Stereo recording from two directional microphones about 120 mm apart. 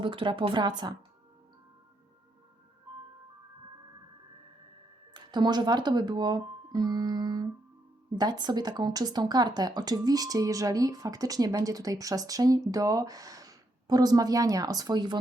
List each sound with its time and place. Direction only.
0.0 s speech: 45° right (ahead or behind)
5.1 s speech: 35° right (ahead or behind)